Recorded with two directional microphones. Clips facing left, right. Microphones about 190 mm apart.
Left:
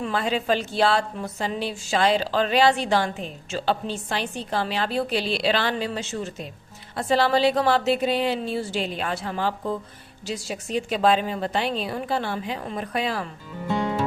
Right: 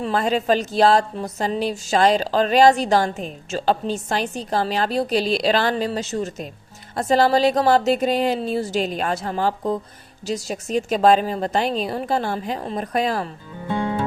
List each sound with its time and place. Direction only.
0.0 s a woman's voice: 40° right (ahead or behind)